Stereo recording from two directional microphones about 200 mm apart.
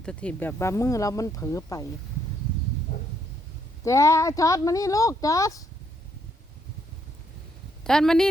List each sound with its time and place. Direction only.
0.0 s speech: 5° left (ahead or behind)
3.8 s speech: 15° left (ahead or behind)
7.9 s speech: 5° left (ahead or behind)